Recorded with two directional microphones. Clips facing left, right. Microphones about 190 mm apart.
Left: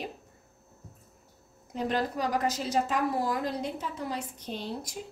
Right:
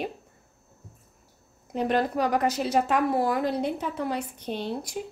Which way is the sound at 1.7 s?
60° right (ahead or behind).